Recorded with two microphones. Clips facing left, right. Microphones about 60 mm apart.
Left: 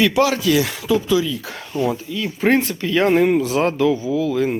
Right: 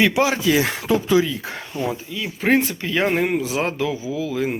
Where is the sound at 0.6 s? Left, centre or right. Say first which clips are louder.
Left 1 dB; right.